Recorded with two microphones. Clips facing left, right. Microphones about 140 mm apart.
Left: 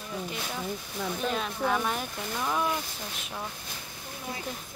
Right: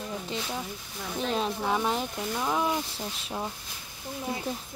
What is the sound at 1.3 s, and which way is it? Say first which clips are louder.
Speech: right 3 dB; 25° right (ahead or behind).